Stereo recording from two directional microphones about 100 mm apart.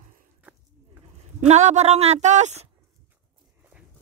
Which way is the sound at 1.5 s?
90° right.